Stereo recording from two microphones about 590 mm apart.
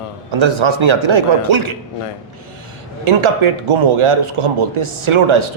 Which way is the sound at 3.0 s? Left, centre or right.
Right.